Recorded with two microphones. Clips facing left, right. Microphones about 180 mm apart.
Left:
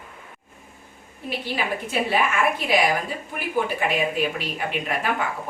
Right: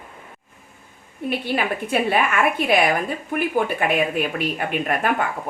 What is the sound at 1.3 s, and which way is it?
Speech, 55° right (ahead or behind).